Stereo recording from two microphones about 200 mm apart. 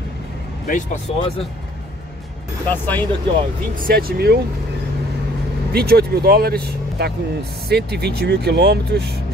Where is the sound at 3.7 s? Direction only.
45° right (ahead or behind).